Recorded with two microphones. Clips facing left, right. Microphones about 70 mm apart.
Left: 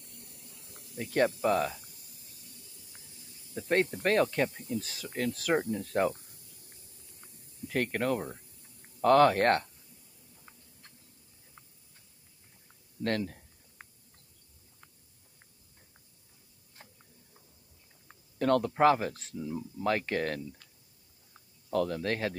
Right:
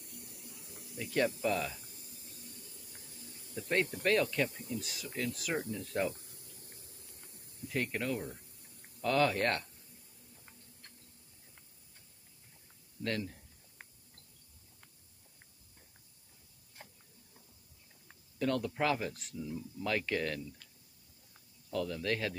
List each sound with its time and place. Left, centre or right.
0.9 s speech: left
2.0 s a sound: right
3.5 s speech: left
5.0 s speech: left
6.3 s a sound: right
7.6 s speech: left
13.0 s speech: left
18.4 s speech: left
21.6 s speech: left